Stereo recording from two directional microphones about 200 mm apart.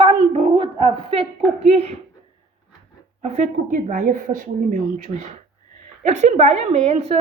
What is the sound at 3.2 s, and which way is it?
Speech, 35° right (ahead or behind).